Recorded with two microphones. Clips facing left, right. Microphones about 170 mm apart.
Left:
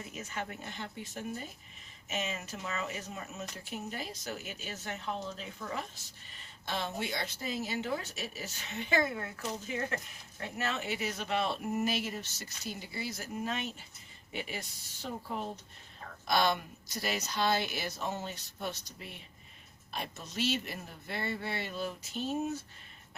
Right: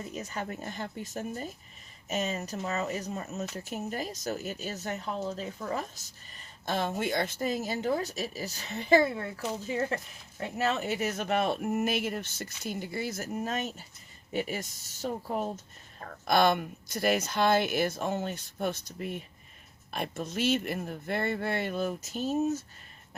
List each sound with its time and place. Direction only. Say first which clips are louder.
0.1 s speech: right 2 dB; 40° right (ahead or behind)
10.7 s speech: right 5 dB; 45° right (ahead or behind)